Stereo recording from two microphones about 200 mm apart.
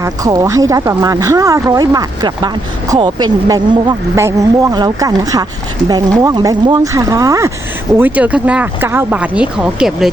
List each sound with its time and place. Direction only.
0.0 s speech: 15° right (ahead or behind)